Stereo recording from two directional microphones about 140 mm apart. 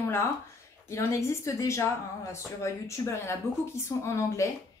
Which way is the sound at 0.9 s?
20° left (ahead or behind).